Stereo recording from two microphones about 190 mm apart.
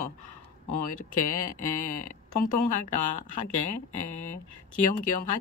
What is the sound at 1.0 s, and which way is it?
Speech, 45° left (ahead or behind).